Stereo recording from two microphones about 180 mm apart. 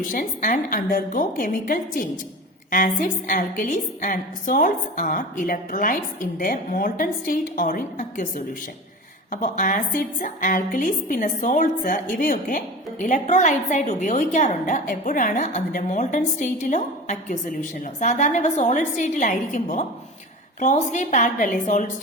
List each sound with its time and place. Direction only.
0.1 s a woman's voice: 50° left (ahead or behind)